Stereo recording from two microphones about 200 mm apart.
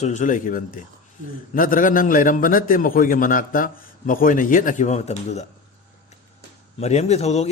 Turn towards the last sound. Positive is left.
turn(degrees=30)  # may be behind; listen again after turning